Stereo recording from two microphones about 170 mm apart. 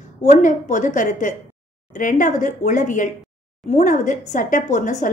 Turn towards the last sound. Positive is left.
turn(degrees=45)  # may be behind; listen again after turning